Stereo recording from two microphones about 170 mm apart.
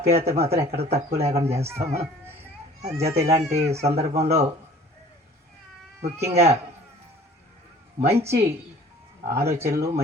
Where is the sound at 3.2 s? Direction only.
15° right (ahead or behind).